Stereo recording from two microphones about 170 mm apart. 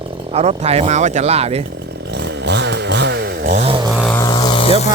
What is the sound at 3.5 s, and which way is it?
Chainsaw, 40° right (ahead or behind).